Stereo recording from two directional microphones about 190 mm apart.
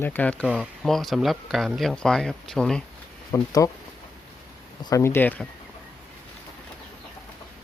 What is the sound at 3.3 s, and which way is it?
Speech, 15° left (ahead or behind).